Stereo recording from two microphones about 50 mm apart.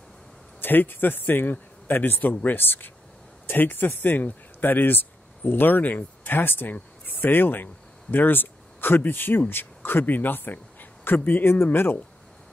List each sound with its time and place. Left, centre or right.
0.6 s a man's voice: left